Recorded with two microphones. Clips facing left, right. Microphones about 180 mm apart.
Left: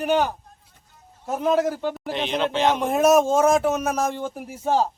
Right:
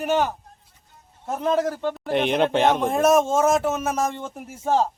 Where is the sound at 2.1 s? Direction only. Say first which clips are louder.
Right 5 dB; 55° right (ahead or behind).